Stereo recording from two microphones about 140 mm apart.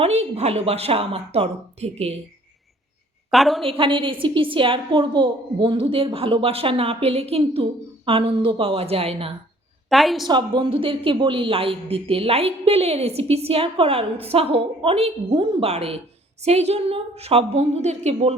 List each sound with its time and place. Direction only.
0.0 s a woman's voice: 50° right (ahead or behind)
3.2 s a woman's voice: centre (ahead or behind)
3.7 s a woman's voice: 35° right (ahead or behind)
9.9 s a woman's voice: centre (ahead or behind)
10.2 s a woman's voice: 35° right (ahead or behind); by 18.3 s 50° right (ahead or behind)